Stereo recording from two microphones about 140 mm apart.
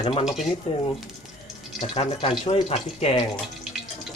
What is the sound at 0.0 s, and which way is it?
Speech, 45° left (ahead or behind).